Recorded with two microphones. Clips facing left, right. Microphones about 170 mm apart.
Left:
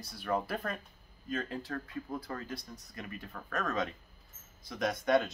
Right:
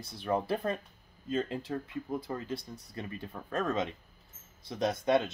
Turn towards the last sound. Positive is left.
turn(degrees=-25)  # may be behind; listen again after turning